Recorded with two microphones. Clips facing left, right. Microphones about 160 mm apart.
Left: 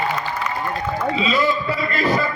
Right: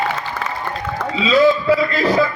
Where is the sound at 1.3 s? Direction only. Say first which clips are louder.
Right 12 dB; 90° right.